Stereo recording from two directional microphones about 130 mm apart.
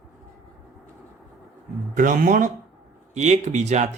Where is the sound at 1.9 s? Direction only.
90° right.